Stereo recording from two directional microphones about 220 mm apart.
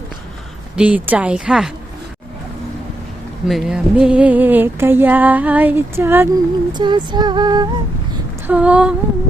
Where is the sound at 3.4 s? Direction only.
Centre (ahead or behind).